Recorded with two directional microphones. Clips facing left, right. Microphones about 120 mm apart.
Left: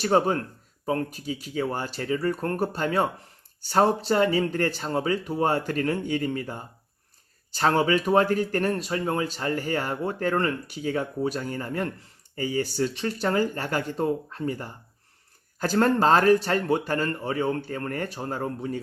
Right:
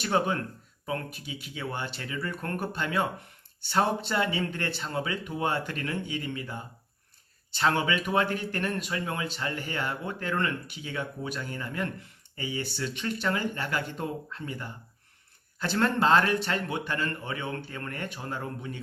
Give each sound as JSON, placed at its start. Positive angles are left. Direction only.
{"t": 0.0, "sound": "speech", "side_deg": 35}